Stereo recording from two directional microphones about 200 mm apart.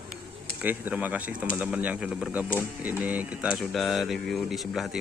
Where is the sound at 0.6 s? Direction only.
10° right (ahead or behind).